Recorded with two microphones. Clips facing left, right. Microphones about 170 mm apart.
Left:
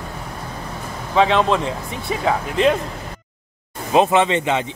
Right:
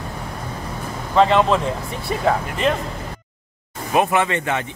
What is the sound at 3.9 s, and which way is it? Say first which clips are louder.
Speech: left 3 dB; 20° left (ahead or behind).